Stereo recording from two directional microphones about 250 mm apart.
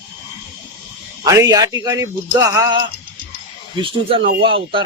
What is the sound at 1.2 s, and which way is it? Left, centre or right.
Speech, centre.